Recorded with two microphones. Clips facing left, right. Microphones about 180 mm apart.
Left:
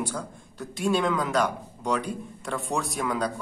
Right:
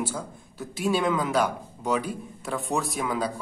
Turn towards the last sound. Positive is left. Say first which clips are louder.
# even
turn(degrees=0)  # may be behind; listen again after turning